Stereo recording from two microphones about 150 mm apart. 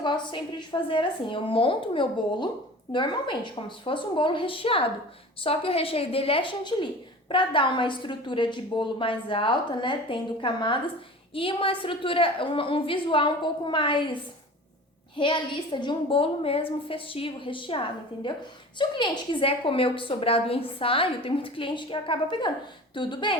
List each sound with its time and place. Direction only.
0.0 s a woman's voice: 30° left (ahead or behind)
15.2 s a woman's voice: 30° left (ahead or behind)